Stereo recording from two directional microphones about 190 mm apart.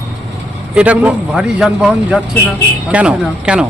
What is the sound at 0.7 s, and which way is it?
A man's voice, 5° right (ahead or behind).